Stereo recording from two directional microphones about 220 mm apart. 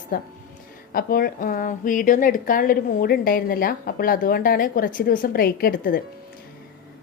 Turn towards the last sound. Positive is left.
turn(degrees=40)  # may be behind; listen again after turning